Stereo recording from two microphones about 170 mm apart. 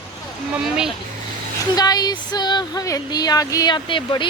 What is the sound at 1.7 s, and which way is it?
Speech, 25° left (ahead or behind).